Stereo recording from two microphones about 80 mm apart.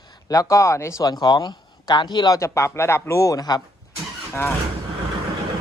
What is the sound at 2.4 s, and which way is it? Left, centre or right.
A man's voice, left.